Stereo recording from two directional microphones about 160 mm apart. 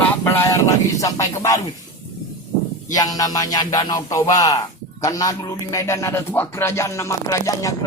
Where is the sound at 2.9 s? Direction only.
25° left (ahead or behind).